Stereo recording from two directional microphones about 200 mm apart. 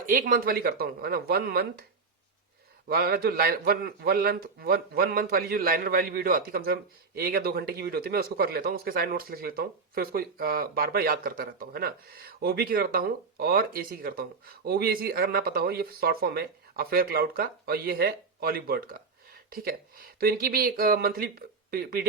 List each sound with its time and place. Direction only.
0.0 s speech: 45° right (ahead or behind)
2.9 s speech: 50° right (ahead or behind)